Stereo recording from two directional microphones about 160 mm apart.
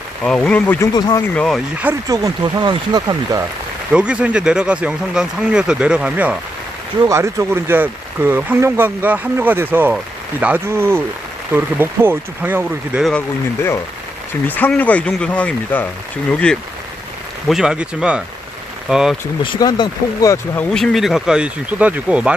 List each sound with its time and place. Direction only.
0.3 s speech: 5° left (ahead or behind)
0.8 s speech: 25° left (ahead or behind)
1.4 s speech: 5° left (ahead or behind)
1.8 s speech: 15° right (ahead or behind)
3.9 s speech: 5° right (ahead or behind)
7.1 s speech: 20° right (ahead or behind)
13.1 s speech: 10° left (ahead or behind)
17.5 s speech: 5° right (ahead or behind)
19.4 s speech: 30° left (ahead or behind)
20.7 s speech: centre (ahead or behind)